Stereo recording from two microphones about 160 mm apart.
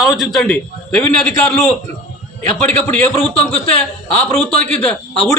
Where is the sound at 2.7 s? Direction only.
10° left (ahead or behind).